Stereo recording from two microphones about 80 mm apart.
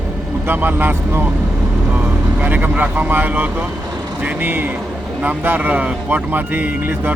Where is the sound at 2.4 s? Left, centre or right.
Right.